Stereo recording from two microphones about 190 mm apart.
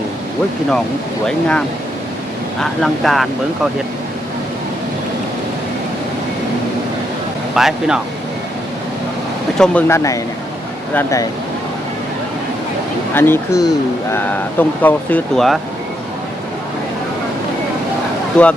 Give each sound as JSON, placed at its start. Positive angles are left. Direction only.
{"t": 2.6, "sound": "speech", "side_deg": 0}
{"t": 7.5, "sound": "speech", "side_deg": -5}
{"t": 9.6, "sound": "speech", "side_deg": 10}
{"t": 13.1, "sound": "speech", "side_deg": 10}
{"t": 18.3, "sound": "speech", "side_deg": 5}